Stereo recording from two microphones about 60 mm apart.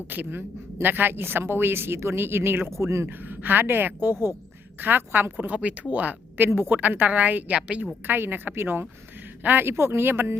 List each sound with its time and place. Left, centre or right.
0.1 s a woman's voice: right
3.1 s a woman's voice: right
5.5 s a woman's voice: right
8.0 s a woman's voice: right